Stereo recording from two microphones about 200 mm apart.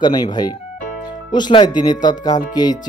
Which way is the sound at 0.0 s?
20° left (ahead or behind).